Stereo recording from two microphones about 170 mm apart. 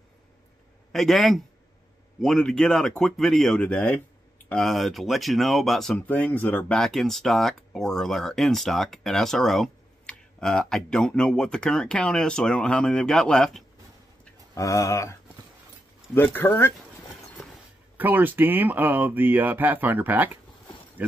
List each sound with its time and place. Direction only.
0.9 s speech: centre (ahead or behind)
14.5 s speech: 20° left (ahead or behind)
16.2 s speech: 10° left (ahead or behind)
17.9 s speech: 10° right (ahead or behind)